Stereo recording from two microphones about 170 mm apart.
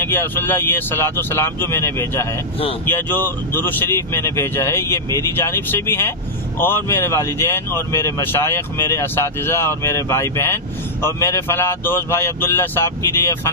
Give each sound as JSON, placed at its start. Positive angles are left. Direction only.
{"t": 0.0, "sound": "speech", "side_deg": 15}